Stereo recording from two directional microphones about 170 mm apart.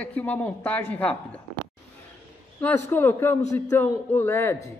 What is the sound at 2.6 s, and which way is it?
A man's voice, 10° left (ahead or behind).